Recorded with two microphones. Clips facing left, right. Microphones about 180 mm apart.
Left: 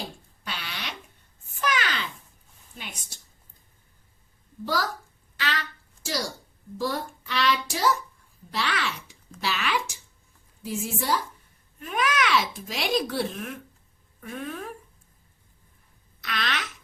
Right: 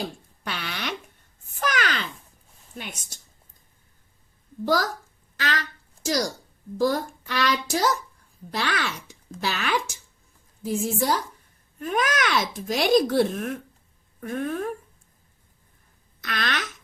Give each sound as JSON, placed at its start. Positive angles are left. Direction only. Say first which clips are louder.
{"t": 0.4, "sound": "a sound", "louder": "right 5 dB", "side_deg": -55}
{"t": 2.7, "sound": "a child's voice", "louder": "right 4 dB", "side_deg": -50}
{"t": 4.6, "sound": "a child's voice", "louder": "right 5 dB", "side_deg": -45}
{"t": 5.4, "sound": "a sound", "louder": "right 2 dB", "side_deg": -45}
{"t": 6.7, "sound": "a child's voice", "louder": "right 6 dB", "side_deg": -40}
{"t": 16.2, "sound": "a child's voice", "louder": "right 2 dB", "side_deg": -50}